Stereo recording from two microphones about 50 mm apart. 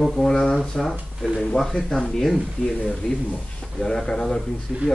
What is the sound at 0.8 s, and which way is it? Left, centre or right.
Speech, centre.